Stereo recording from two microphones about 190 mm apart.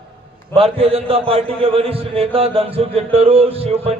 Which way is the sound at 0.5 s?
30° right (ahead or behind).